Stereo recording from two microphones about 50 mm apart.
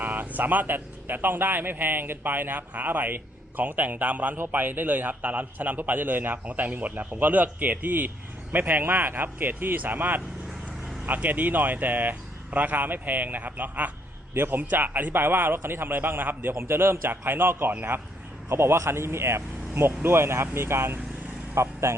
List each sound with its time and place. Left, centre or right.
0.0 s a sound: right
0.3 s speech: right
6.8 s speech: right
14.3 s speech: right
14.7 s a man's voice: right
21.5 s vehicle: right